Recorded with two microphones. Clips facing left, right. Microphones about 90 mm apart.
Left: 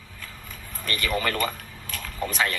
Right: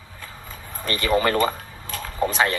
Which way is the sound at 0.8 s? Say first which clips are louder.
Right 6 dB; 25° right (ahead or behind).